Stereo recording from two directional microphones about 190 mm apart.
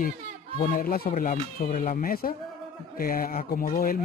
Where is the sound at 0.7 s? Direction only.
50° left (ahead or behind).